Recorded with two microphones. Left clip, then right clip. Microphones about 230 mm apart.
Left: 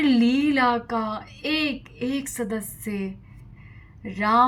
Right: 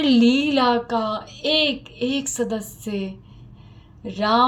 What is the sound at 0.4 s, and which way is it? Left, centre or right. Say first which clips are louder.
A woman's voice: right 2 dB; left.